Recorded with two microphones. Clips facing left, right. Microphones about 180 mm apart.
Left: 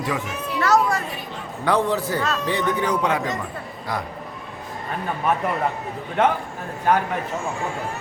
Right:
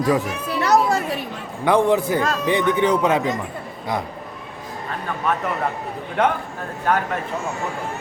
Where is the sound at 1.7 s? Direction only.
15° right (ahead or behind).